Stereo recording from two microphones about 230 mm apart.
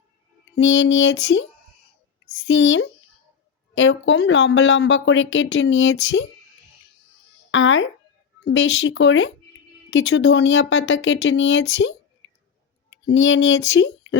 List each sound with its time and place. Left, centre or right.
0.5 s speech: left
2.5 s speech: left
7.5 s speech: left
12.2 s a sound: left
13.1 s speech: left